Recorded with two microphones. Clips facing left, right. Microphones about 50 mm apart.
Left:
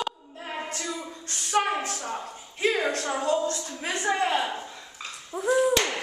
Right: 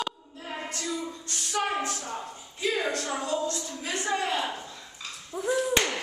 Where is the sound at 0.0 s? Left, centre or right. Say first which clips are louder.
Left 2 dB; centre.